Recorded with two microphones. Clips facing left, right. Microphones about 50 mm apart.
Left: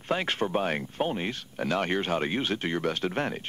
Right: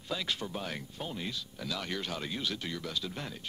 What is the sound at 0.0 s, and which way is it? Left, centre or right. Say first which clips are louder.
Speech: left 8 dB; left.